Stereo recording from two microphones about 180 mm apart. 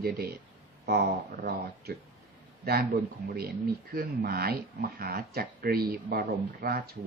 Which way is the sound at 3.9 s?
60° right (ahead or behind).